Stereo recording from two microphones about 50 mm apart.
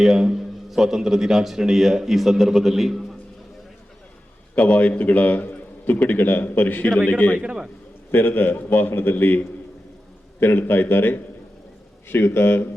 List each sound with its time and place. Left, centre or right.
0.0 s a man's voice: centre
4.5 s a man's voice: left
7.3 s a man's voice: right
8.1 s a man's voice: left
10.4 s a man's voice: left